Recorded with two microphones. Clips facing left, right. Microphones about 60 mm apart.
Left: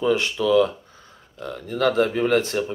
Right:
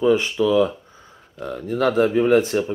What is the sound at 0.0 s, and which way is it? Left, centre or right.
Speech, centre.